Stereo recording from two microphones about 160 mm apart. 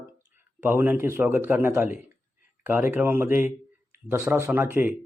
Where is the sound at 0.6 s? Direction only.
10° right (ahead or behind).